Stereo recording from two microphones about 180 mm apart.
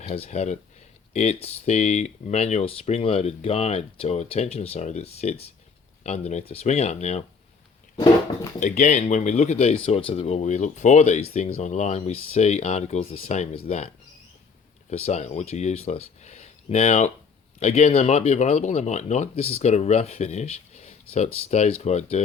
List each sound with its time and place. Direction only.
0.1 s speech: 35° left (ahead or behind)
8.6 s speech: 45° left (ahead or behind)